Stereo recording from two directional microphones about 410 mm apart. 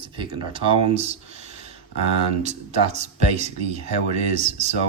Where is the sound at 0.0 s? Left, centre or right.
Centre.